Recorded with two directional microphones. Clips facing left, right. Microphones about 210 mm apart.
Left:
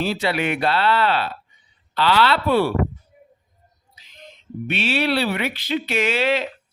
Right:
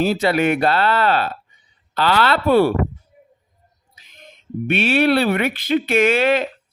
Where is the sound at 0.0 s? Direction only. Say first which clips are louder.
Right 5 dB; 45° right (ahead or behind).